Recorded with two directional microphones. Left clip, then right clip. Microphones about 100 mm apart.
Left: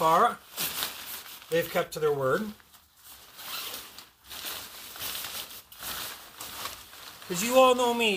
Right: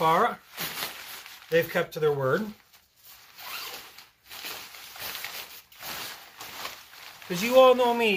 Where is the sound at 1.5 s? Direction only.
Centre (ahead or behind).